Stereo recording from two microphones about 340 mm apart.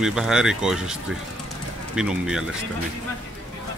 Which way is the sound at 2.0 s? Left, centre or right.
Centre.